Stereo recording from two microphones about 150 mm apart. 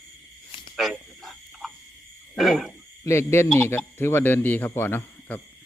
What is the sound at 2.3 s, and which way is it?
Frog, centre (ahead or behind).